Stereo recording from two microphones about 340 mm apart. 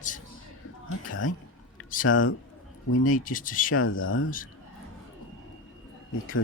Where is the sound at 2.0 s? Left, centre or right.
Left.